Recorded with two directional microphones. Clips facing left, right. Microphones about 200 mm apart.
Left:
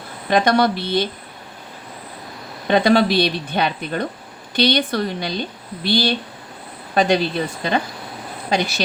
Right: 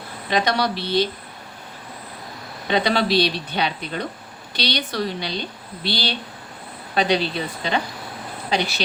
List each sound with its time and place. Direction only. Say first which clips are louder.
0.3 s a woman's voice: left 5 dB; 50° left (ahead or behind)
2.6 s a woman's voice: left 5 dB; 50° left (ahead or behind)